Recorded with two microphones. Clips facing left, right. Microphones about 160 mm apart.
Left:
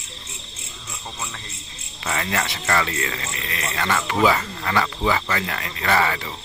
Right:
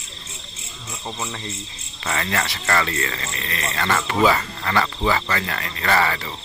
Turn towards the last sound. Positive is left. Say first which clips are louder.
# even
turn(degrees=10)  # may be behind; listen again after turning